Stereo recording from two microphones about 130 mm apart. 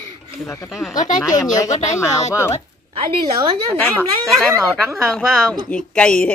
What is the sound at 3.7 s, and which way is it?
Speech, 15° left (ahead or behind).